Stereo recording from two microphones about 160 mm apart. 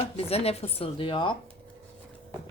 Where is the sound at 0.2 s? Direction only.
40° left (ahead or behind).